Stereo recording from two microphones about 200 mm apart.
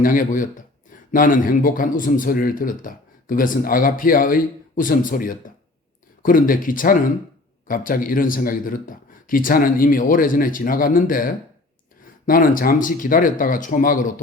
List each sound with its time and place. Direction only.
0.0 s speech: 45° left (ahead or behind)